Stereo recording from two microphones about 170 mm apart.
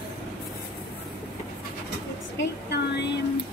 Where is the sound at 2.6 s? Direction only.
75° left (ahead or behind).